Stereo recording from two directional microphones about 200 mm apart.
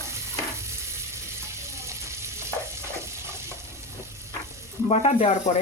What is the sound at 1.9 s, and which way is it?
Frying, 15° right (ahead or behind).